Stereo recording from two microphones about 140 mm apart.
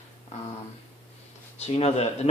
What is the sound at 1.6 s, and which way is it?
Speech, 50° left (ahead or behind).